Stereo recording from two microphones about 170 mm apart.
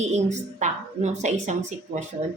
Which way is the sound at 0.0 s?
45° right (ahead or behind).